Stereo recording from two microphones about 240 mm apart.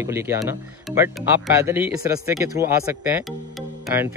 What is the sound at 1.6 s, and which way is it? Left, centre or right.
Speech, centre.